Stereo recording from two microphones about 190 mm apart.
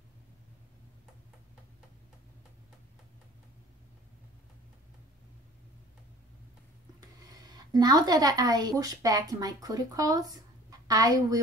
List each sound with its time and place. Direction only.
7.2 s a woman's voice: 20° right (ahead or behind)